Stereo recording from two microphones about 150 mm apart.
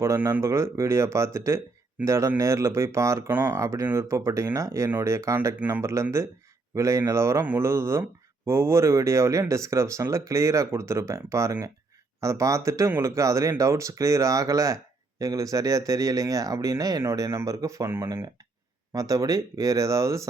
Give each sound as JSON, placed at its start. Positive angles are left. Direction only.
{"t": 0.0, "sound": "speech", "side_deg": -20}